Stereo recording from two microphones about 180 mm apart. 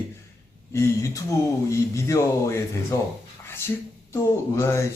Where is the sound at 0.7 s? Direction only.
15° left (ahead or behind).